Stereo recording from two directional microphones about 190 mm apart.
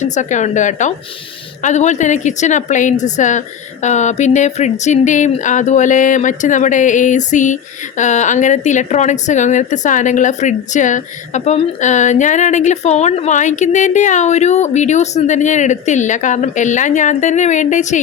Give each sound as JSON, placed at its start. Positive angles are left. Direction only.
{"t": 0.0, "sound": "speech", "side_deg": 40}